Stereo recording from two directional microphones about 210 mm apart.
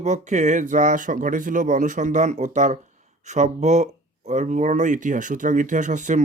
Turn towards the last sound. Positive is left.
turn(degrees=-35)  # may be behind; listen again after turning